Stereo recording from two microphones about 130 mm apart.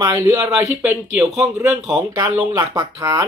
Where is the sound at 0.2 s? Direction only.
25° right (ahead or behind).